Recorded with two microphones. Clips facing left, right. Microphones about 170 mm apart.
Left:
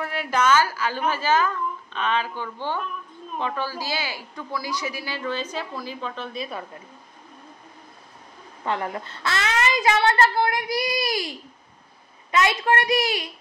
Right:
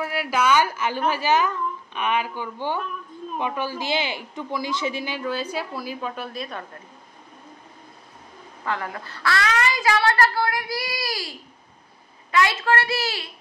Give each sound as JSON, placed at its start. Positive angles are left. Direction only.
{"t": 0.0, "sound": "a woman's voice", "side_deg": -5}
{"t": 5.2, "sound": "a woman's voice", "side_deg": -10}
{"t": 8.6, "sound": "a child's voice", "side_deg": 25}